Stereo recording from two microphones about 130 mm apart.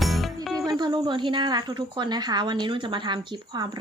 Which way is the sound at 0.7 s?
35° right (ahead or behind).